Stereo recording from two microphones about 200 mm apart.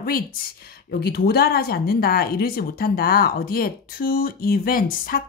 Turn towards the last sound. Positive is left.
turn(degrees=45)  # may be behind; listen again after turning